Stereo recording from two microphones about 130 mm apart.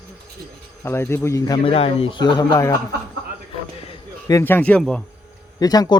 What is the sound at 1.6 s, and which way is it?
Speech, 45° left (ahead or behind).